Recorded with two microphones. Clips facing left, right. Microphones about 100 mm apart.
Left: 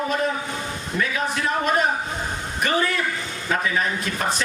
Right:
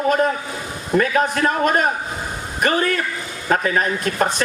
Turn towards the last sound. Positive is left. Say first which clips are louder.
# right 5 dB
turn(degrees=-45)  # may be behind; listen again after turning